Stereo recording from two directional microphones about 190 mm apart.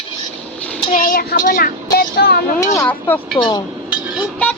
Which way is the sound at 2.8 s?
10° left (ahead or behind).